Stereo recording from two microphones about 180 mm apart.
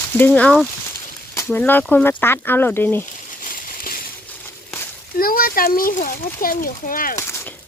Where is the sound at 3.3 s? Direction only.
50° left (ahead or behind).